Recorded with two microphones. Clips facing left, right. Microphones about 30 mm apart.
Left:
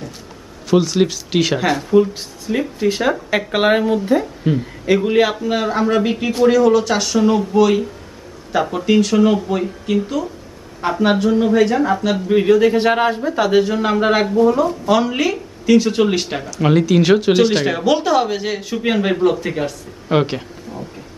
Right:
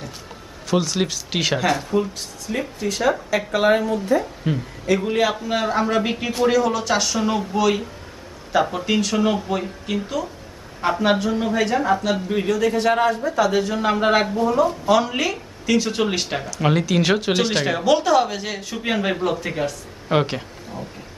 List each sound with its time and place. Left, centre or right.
0.7 s speech: centre
3.3 s speech: left
4.4 s speech: centre
5.3 s speech: centre